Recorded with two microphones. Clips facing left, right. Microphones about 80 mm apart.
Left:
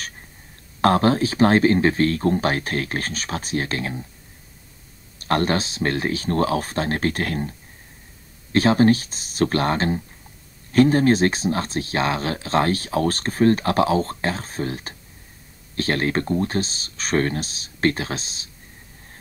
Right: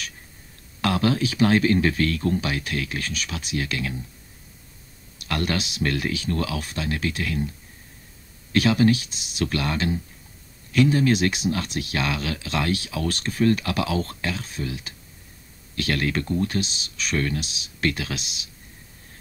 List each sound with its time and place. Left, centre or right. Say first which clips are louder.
0.7 s speech: left 5 dB; left
5.2 s speech: left 5 dB; left